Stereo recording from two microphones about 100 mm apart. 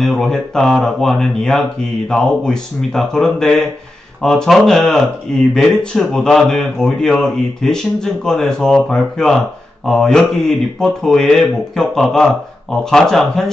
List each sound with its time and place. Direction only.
0.0 s speech: 5° left (ahead or behind)